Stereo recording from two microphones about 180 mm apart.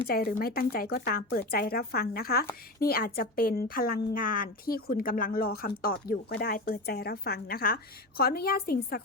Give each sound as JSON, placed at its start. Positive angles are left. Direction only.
{"t": 0.1, "sound": "speech", "side_deg": 55}